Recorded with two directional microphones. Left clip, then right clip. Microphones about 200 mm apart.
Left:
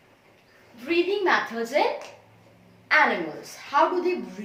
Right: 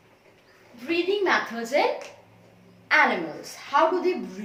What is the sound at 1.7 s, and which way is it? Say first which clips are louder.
Speech: even; 20° right (ahead or behind).